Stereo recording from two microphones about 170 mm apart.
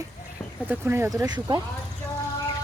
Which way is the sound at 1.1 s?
25° right (ahead or behind).